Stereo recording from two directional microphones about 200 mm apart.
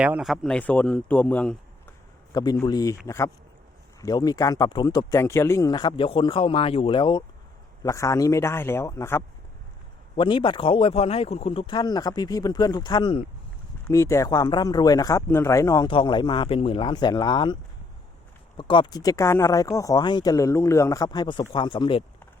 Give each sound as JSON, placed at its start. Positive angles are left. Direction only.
{"t": 0.0, "sound": "a man's voice", "side_deg": -5}
{"t": 2.3, "sound": "speech", "side_deg": 20}
{"t": 10.2, "sound": "speech", "side_deg": 25}